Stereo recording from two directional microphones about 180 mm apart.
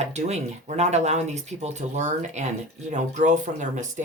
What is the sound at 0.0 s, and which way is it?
Speech, 40° right (ahead or behind).